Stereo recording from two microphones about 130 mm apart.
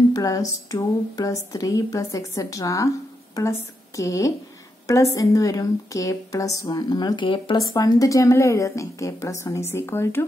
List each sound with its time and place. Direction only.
0.1 s a woman's voice: 25° left (ahead or behind)